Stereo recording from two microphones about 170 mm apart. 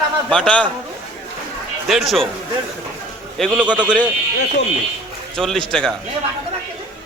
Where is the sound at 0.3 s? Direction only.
5° left (ahead or behind).